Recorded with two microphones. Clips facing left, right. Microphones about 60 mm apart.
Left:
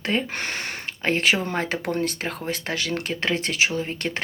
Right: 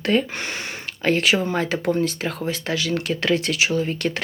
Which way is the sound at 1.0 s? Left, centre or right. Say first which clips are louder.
Right 2 dB; left.